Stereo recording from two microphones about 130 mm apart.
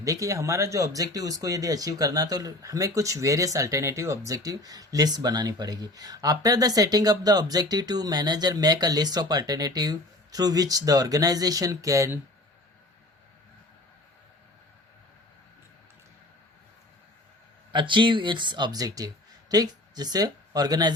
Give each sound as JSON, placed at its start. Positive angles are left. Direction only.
{"t": 0.0, "sound": "speech", "side_deg": -25}
{"t": 17.7, "sound": "speech", "side_deg": -40}